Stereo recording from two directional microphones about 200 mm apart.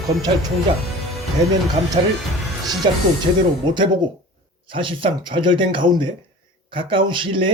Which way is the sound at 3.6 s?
20° right (ahead or behind).